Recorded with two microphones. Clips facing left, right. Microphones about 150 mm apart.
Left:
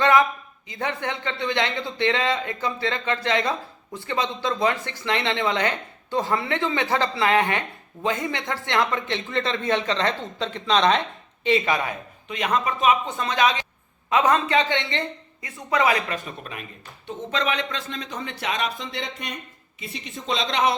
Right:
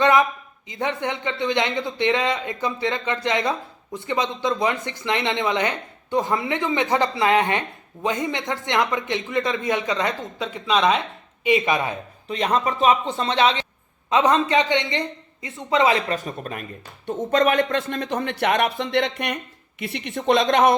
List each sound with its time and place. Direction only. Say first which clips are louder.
0.0 s speech: right 1 dB; 20° right (ahead or behind)
11.4 s speech: right 2 dB; 15° right (ahead or behind)
12.3 s speech: right 2 dB; 35° right (ahead or behind); by 20.7 s 50° right (ahead or behind)